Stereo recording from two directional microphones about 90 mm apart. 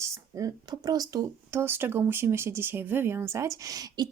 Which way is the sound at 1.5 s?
25° right (ahead or behind).